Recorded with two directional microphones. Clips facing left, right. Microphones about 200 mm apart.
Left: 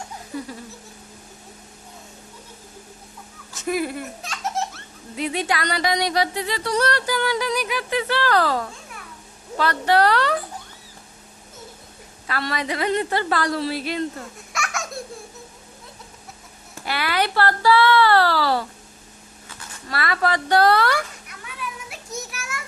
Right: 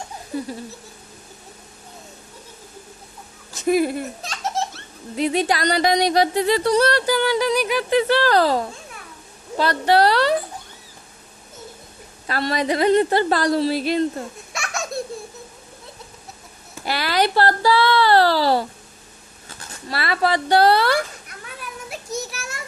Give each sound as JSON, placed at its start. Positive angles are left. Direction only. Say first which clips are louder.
{"t": 3.5, "sound": "speech", "louder": "right 6 dB", "side_deg": -35}
{"t": 6.6, "sound": "a woman's voice", "louder": "right 5 dB", "side_deg": -30}
{"t": 12.3, "sound": "a woman's voice", "louder": "right 5 dB", "side_deg": -35}
{"t": 16.8, "sound": "a woman's voice", "louder": "right 3 dB", "side_deg": -35}
{"t": 21.6, "sound": "a sound", "louder": "even", "side_deg": -40}